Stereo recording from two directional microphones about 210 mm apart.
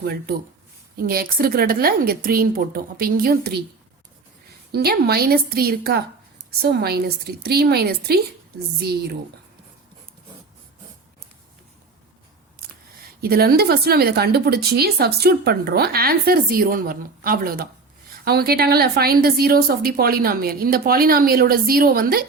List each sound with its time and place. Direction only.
0.0 s speech: 50° right (ahead or behind)
4.7 s speech: 50° right (ahead or behind)
13.2 s speech: 45° right (ahead or behind)